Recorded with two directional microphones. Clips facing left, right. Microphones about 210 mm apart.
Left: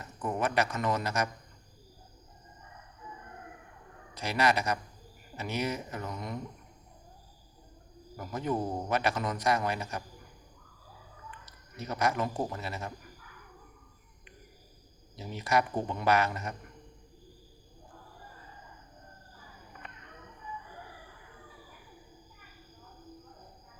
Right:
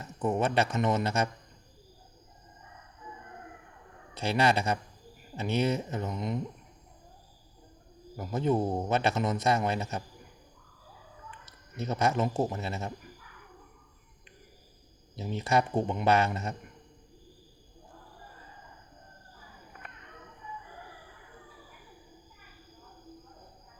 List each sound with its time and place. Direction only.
0.0 s a man's voice: 25° right (ahead or behind)
4.1 s a man's voice: 30° right (ahead or behind)
8.1 s a man's voice: 25° right (ahead or behind)
11.8 s a man's voice: 25° right (ahead or behind)
15.1 s a man's voice: 25° right (ahead or behind)